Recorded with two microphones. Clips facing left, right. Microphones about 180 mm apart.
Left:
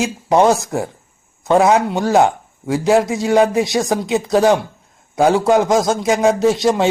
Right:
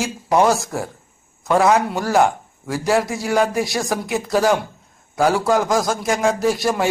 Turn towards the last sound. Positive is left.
turn(degrees=20)  # may be behind; listen again after turning